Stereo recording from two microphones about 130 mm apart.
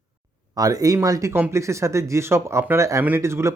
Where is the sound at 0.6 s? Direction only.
25° right (ahead or behind).